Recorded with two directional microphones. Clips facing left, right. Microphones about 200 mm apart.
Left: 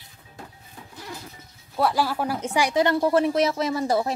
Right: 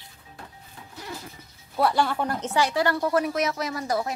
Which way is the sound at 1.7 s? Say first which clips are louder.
Even; centre (ahead or behind).